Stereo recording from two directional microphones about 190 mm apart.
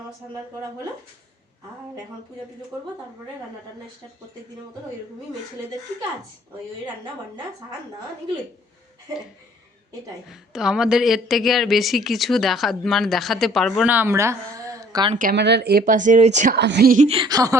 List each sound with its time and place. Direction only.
2.7 s speech: 15° right (ahead or behind)
10.2 s a woman's voice: 5° right (ahead or behind); by 15.1 s 20° right (ahead or behind)
15.1 s a woman's voice: 45° right (ahead or behind)
15.4 s a woman's voice: 60° right (ahead or behind)
15.8 s speech: 40° right (ahead or behind)
16.6 s a woman's voice: 65° right (ahead or behind)
16.9 s a woman's voice: 35° right (ahead or behind); by 17.6 s 20° right (ahead or behind)